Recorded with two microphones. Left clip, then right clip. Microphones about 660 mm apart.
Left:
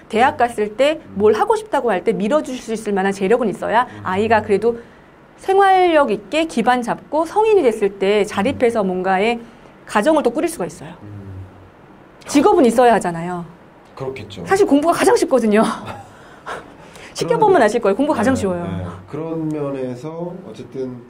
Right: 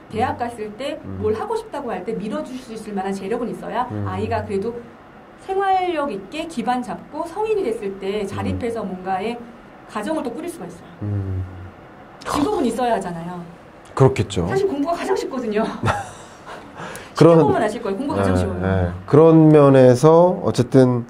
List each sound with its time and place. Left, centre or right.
0.1 s a woman's voice: left
12.3 s speech: left
13.9 s speech: right
14.5 s speech: left
17.1 s speech: left
18.7 s speech: right